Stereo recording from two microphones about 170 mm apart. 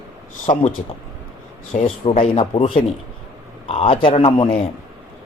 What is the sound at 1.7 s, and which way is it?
Speech, 40° left (ahead or behind).